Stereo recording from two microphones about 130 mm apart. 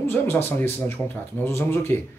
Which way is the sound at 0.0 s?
15° left (ahead or behind).